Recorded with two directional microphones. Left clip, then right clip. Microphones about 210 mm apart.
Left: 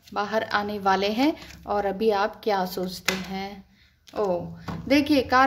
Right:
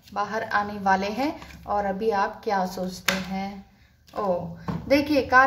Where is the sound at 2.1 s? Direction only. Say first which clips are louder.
Left 2 dB; 65° left (ahead or behind).